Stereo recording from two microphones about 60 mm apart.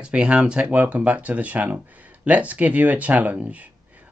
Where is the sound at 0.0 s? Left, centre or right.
Centre.